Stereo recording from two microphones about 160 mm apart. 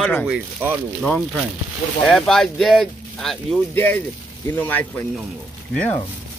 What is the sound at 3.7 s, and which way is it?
Speech, 10° left (ahead or behind).